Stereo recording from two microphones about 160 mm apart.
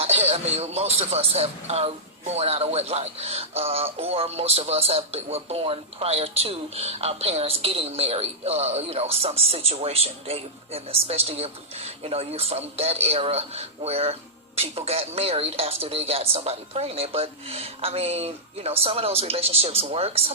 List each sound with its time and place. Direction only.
0.0 s a man's voice: 40° right (ahead or behind)